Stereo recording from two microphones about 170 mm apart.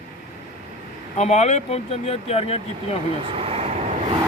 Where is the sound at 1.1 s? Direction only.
40° left (ahead or behind).